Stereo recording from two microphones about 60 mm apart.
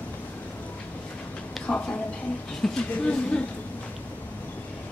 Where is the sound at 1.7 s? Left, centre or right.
Left.